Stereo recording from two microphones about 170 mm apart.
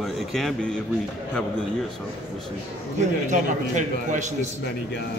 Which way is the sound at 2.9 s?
45° right (ahead or behind).